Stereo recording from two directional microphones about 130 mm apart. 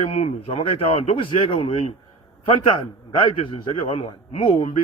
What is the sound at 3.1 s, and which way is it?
A man's voice, 40° left (ahead or behind).